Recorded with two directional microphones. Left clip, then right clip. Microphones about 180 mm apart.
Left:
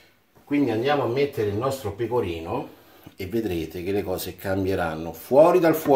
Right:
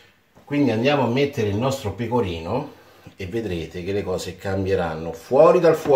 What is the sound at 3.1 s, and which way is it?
Speech, 45° left (ahead or behind).